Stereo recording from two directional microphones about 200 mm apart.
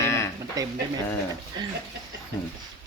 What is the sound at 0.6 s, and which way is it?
Speech, 15° right (ahead or behind).